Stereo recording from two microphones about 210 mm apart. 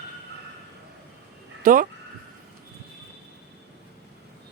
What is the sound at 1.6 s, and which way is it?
Speech, 40° right (ahead or behind).